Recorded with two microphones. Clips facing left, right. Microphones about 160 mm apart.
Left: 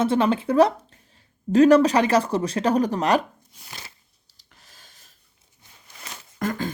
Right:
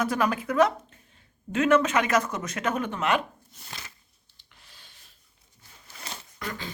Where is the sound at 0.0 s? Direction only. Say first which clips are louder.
Left 6 dB; 25° left (ahead or behind).